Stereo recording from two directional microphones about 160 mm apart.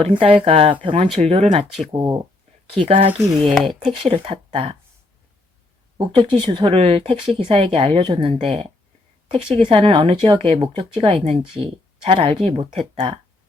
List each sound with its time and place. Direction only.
0.1 s speech: 35° right (ahead or behind)
3.5 s speech: centre (ahead or behind)
4.0 s speech: 35° right (ahead or behind)
6.0 s speech: 35° right (ahead or behind)